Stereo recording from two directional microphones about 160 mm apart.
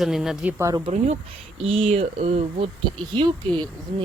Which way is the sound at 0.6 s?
20° right (ahead or behind).